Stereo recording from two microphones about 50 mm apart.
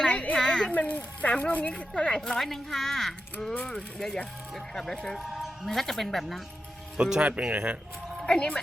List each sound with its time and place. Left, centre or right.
0.1 s a woman's voice: left
0.3 s a sound: centre
0.7 s speech: left
1.7 s speech: centre
6.9 s speech: centre
7.2 s speech: right
8.3 s speech: centre